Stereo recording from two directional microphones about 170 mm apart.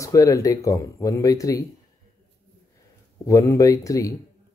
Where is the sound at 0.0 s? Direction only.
20° left (ahead or behind).